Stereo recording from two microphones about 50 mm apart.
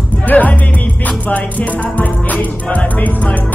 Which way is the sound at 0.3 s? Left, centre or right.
Left.